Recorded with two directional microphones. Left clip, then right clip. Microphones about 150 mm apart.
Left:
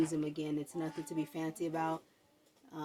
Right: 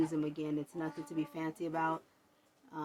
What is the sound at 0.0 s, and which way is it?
Speech, 70° right (ahead or behind).